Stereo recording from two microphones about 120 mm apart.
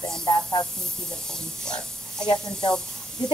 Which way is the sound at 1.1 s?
5° left (ahead or behind).